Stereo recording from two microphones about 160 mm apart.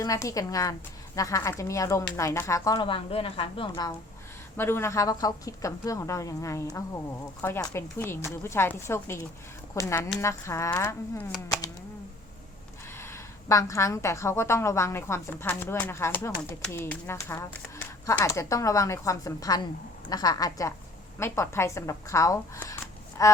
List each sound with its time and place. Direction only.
0.0 s a woman's voice: 20° left (ahead or behind)
4.5 s a woman's voice: 15° left (ahead or behind)
13.0 s a woman's voice: 15° left (ahead or behind)